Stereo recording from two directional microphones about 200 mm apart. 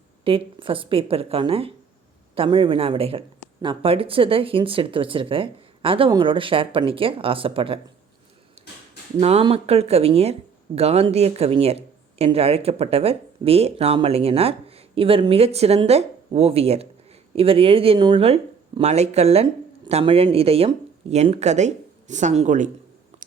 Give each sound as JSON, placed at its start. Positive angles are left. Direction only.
{"t": 0.3, "sound": "speech", "side_deg": -25}
{"t": 8.6, "sound": "a sound", "side_deg": -30}
{"t": 9.2, "sound": "speech", "side_deg": -30}